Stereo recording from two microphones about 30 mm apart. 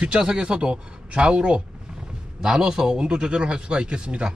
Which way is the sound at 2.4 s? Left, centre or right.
Right.